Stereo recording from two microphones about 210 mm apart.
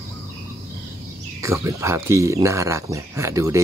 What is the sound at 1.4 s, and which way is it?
Speech, 15° right (ahead or behind).